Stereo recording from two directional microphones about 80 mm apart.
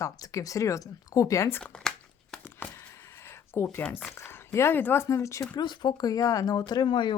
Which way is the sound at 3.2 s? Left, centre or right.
Left.